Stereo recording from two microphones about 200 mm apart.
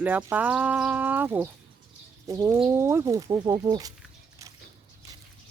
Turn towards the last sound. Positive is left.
turn(degrees=-20)  # may be behind; listen again after turning